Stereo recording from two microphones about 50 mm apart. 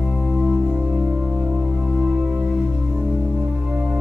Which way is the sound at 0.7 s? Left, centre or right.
Right.